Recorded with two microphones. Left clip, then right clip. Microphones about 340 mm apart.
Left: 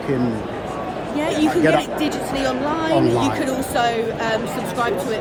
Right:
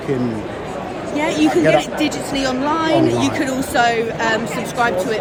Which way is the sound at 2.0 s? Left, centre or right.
Right.